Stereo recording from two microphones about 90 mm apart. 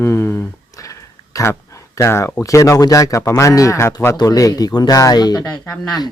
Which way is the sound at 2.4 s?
35° left (ahead or behind).